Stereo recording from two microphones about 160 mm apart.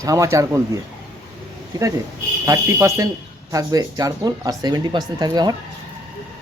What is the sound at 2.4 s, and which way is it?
Speech, 20° right (ahead or behind).